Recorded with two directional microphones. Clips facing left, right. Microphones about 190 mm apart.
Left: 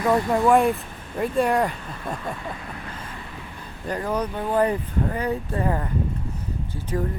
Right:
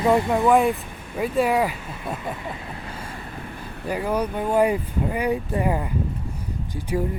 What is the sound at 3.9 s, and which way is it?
Speech, 10° right (ahead or behind).